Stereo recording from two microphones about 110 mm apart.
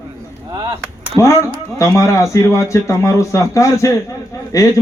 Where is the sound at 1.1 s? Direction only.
30° left (ahead or behind).